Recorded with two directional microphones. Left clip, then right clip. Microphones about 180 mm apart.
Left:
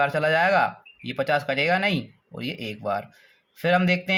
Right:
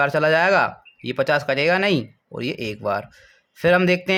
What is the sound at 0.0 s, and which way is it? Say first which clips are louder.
Speech: right 3 dB; 30° right (ahead or behind).